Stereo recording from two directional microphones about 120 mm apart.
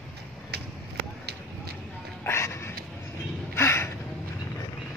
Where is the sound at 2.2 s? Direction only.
20° left (ahead or behind).